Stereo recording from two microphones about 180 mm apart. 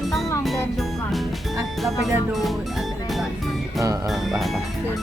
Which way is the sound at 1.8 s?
Centre (ahead or behind).